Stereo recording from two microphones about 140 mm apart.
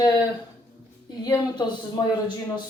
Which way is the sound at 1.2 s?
30° left (ahead or behind).